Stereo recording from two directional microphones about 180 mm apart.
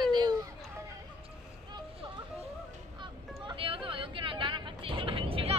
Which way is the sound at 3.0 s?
25° right (ahead or behind).